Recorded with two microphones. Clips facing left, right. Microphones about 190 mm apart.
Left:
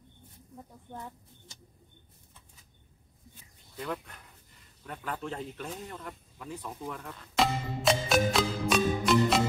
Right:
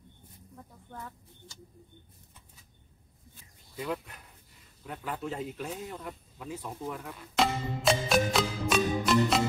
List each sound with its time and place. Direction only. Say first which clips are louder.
0.8 s speech: left 1 dB; 20° left (ahead or behind)
3.7 s speech: right 2 dB; 5° right (ahead or behind)